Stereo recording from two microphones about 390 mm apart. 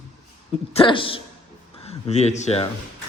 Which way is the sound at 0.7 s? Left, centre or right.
Centre.